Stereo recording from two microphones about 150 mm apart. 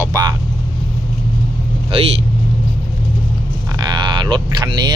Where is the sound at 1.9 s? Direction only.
40° right (ahead or behind).